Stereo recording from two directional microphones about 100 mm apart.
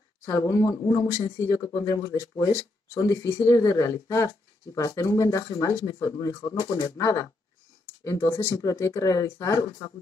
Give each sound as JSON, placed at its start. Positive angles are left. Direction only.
{"t": 0.2, "sound": "speech", "side_deg": 35}